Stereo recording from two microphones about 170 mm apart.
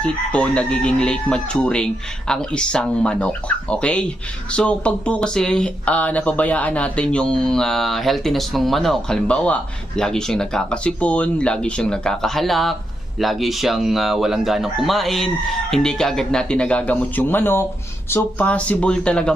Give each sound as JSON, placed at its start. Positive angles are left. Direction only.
{"t": 0.0, "sound": "speech", "side_deg": 5}